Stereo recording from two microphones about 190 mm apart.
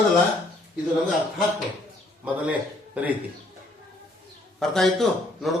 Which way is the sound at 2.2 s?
5° right (ahead or behind).